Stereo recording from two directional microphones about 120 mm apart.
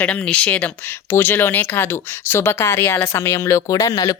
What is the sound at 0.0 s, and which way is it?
Speech, 10° left (ahead or behind).